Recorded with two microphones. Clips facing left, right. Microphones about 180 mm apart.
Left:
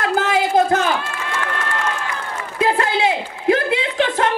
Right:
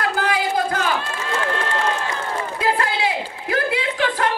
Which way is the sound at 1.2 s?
30° right (ahead or behind).